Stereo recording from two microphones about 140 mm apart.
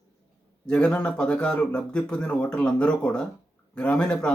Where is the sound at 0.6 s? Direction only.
5° left (ahead or behind).